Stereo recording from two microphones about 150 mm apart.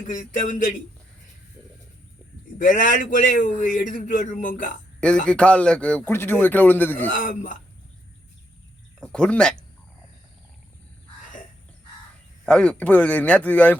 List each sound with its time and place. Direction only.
0.1 s a man's voice: 60° left (ahead or behind)
2.6 s a man's voice: 60° left (ahead or behind)
4.9 s speech: 5° left (ahead or behind)
7.1 s a man's voice: 65° left (ahead or behind)
9.0 s speech: 5° left (ahead or behind)
12.5 s speech: 5° left (ahead or behind)